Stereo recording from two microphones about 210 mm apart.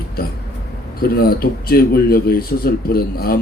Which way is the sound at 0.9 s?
45° left (ahead or behind).